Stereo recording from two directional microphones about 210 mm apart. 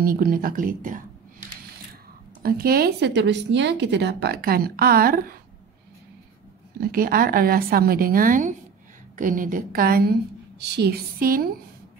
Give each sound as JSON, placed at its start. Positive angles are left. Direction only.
{"t": 0.0, "sound": "a woman's voice", "side_deg": -45}
{"t": 2.6, "sound": "a woman's voice", "side_deg": -45}
{"t": 6.8, "sound": "a woman's voice", "side_deg": -45}